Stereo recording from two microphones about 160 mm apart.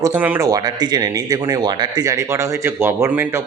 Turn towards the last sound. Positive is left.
turn(degrees=-15)  # may be behind; listen again after turning